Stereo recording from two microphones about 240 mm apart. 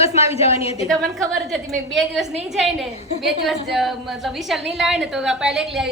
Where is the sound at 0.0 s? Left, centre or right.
Left.